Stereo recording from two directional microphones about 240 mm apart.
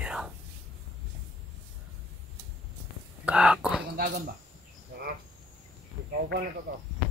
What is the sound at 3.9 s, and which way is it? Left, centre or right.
Cricket, right.